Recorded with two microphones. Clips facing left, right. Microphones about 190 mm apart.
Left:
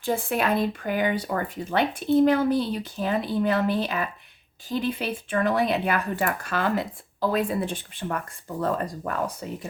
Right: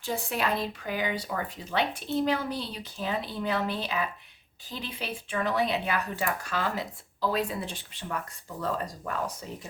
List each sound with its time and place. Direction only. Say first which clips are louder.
0.0 s speech: left 5 dB; 55° left (ahead or behind)